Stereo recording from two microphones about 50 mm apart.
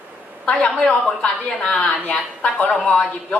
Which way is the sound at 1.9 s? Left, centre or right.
Left.